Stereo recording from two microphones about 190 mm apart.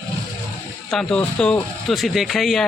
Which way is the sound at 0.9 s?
5° left (ahead or behind).